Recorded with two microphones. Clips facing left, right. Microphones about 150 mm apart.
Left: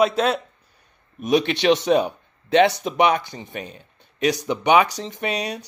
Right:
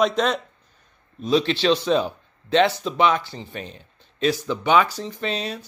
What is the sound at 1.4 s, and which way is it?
Speech, 20° left (ahead or behind).